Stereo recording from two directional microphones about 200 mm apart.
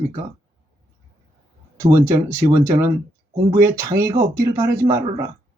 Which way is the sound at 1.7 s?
15° right (ahead or behind).